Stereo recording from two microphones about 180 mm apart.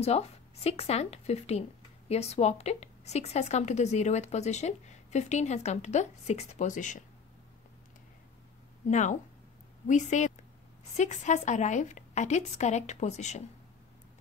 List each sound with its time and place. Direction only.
0.0 s speech: 35° left (ahead or behind)
8.8 s speech: 40° left (ahead or behind)